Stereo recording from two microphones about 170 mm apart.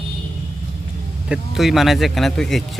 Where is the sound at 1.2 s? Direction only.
5° right (ahead or behind).